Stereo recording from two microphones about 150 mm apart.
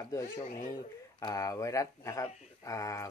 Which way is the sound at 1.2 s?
25° left (ahead or behind).